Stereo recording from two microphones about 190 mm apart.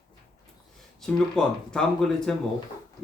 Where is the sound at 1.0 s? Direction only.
5° left (ahead or behind).